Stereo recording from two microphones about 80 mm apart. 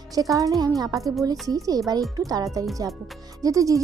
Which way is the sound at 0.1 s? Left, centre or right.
Right.